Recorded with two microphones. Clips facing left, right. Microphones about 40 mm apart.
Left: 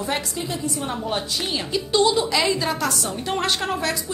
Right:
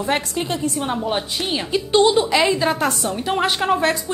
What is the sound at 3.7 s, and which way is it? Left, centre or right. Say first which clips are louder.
Speech: right 7 dB; right.